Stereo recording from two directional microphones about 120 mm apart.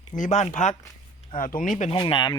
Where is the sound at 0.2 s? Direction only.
75° left (ahead or behind).